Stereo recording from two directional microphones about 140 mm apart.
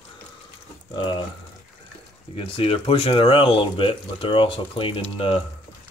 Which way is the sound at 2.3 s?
40° left (ahead or behind).